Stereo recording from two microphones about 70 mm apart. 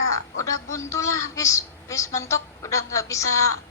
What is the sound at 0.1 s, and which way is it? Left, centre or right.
Speech, left.